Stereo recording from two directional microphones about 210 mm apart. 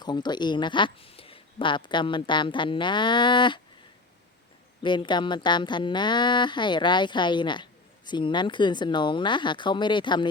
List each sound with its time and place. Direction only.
0.0 s speech: 20° left (ahead or behind)
4.8 s speech: 20° left (ahead or behind)